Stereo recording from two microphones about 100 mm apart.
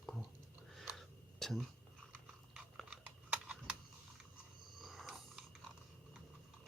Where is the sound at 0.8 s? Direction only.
Centre (ahead or behind).